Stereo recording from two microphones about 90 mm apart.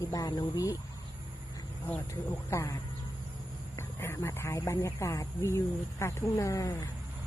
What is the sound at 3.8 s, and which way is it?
Speech, 30° left (ahead or behind).